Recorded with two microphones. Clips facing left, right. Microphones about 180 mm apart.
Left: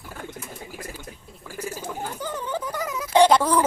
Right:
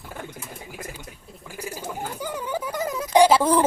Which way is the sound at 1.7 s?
10° right (ahead or behind).